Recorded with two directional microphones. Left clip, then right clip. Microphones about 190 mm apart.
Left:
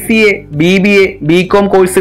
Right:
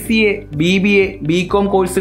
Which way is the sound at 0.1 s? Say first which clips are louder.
Left 6 dB; 10° left (ahead or behind).